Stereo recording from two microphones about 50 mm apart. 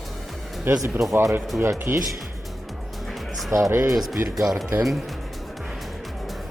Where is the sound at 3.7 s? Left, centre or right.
Right.